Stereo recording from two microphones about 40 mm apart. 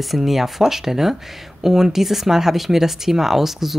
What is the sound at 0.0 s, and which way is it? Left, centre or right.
Speech, centre.